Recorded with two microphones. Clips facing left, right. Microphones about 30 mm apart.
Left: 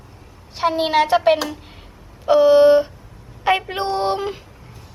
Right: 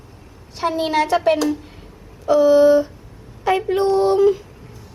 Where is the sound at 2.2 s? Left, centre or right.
Left.